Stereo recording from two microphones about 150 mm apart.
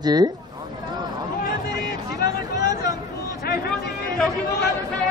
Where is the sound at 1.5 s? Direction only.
90° left.